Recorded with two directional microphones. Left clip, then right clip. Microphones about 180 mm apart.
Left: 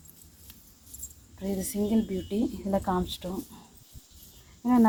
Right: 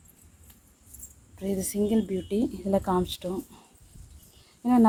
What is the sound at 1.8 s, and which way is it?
Speech, 35° right (ahead or behind).